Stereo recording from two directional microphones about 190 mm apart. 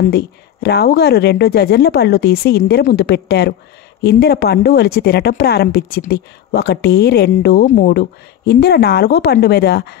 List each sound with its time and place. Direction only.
0.1 s speech: 60° left (ahead or behind)
7.6 s speech: 50° left (ahead or behind)